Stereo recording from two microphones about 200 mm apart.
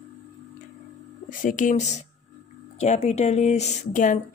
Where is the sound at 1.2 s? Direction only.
40° left (ahead or behind).